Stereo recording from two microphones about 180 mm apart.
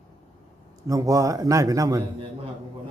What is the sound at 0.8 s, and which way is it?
A man's voice, 20° right (ahead or behind).